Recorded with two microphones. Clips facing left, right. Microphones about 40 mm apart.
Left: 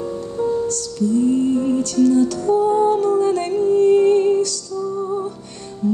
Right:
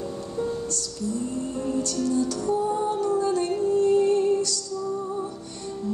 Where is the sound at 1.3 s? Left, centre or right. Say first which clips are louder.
Left 10 dB; left.